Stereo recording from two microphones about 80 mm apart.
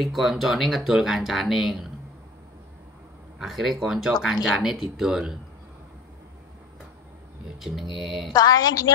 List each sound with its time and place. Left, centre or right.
0.0 s speech: centre
3.3 s speech: centre
7.9 s speech: centre
8.3 s a woman's voice: left